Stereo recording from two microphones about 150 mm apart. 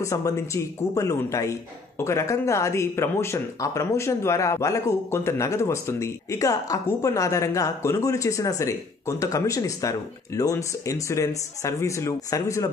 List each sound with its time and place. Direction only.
0.0 s speech: 20° left (ahead or behind)